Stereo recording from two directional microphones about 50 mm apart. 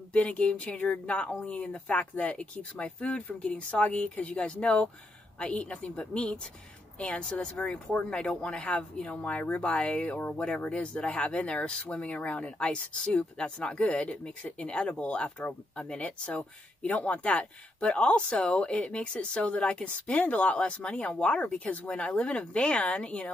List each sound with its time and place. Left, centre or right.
0.1 s speech: left